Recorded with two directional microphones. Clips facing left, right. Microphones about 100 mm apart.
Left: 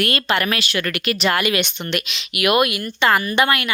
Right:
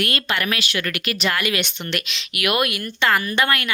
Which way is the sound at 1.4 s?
20° left (ahead or behind).